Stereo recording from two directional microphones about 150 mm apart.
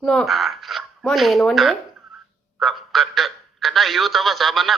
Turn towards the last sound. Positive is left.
turn(degrees=0)  # may be behind; listen again after turning